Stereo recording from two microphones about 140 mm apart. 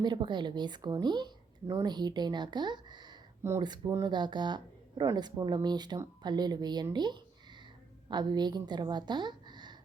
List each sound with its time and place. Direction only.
0.0 s a woman's voice: 35° right (ahead or behind)